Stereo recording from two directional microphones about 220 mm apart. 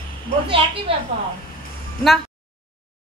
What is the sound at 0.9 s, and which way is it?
Speech, 25° right (ahead or behind).